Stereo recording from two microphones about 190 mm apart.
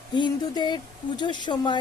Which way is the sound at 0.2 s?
25° left (ahead or behind).